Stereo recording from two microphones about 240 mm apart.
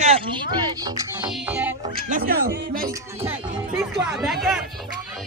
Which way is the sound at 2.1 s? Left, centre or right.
Right.